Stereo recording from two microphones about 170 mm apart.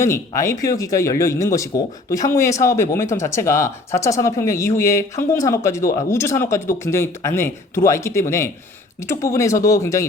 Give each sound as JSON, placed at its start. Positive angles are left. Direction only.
{"t": 0.0, "sound": "speech", "side_deg": 15}